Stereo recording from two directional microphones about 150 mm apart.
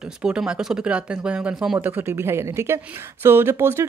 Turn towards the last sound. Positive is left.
turn(degrees=-15)  # may be behind; listen again after turning